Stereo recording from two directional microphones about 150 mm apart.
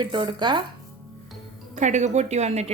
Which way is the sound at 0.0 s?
30° right (ahead or behind).